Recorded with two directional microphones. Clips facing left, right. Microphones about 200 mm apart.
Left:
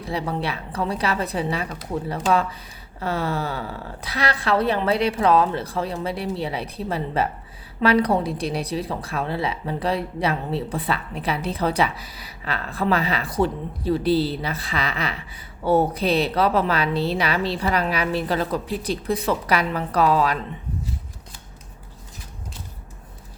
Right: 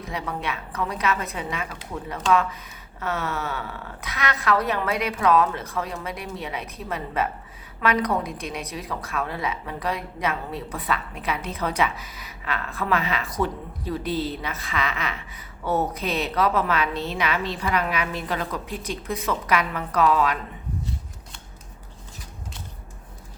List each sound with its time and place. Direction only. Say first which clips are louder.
0.0 s a woman's voice: left 4 dB; 30° left (ahead or behind)